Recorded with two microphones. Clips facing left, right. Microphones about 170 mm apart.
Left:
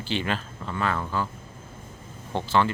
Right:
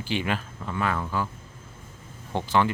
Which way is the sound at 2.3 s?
15° right (ahead or behind).